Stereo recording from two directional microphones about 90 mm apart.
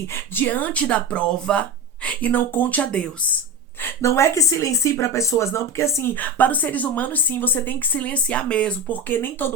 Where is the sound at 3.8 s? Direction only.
30° left (ahead or behind).